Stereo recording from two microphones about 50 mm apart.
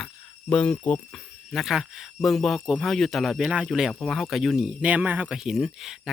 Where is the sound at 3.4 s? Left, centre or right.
Centre.